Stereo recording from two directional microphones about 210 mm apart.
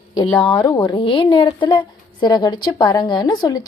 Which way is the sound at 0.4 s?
20° left (ahead or behind).